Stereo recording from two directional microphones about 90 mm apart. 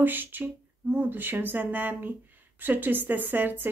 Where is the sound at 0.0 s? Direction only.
20° right (ahead or behind).